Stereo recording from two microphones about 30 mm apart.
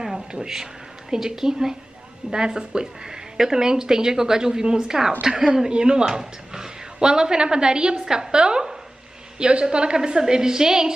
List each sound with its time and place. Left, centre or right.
1.1 s a woman's voice: centre
5.3 s speech: right
6.0 s a woman's voice: centre